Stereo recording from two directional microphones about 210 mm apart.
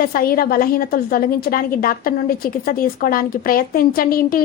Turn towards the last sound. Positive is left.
turn(degrees=45)  # may be behind; listen again after turning